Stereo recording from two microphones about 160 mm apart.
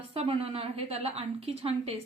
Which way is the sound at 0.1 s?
35° right (ahead or behind).